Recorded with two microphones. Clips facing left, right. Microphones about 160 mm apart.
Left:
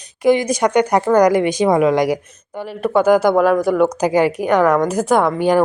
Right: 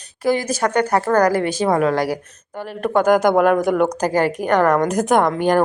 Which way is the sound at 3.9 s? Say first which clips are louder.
Left 3 dB; 10° left (ahead or behind).